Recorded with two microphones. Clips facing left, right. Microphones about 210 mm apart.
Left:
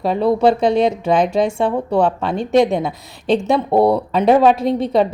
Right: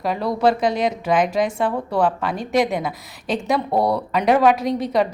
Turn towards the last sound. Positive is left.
turn(degrees=25)  # may be behind; listen again after turning